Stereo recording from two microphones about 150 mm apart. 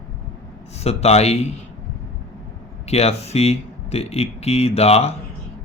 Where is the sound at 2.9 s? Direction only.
45° left (ahead or behind).